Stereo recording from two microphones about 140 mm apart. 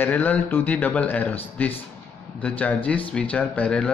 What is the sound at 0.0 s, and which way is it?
Speech, 10° left (ahead or behind).